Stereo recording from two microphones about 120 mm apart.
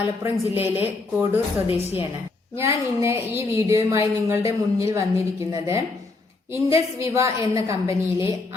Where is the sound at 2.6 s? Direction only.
20° right (ahead or behind).